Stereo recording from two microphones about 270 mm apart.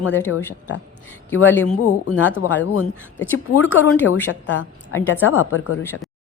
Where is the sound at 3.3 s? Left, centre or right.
Left.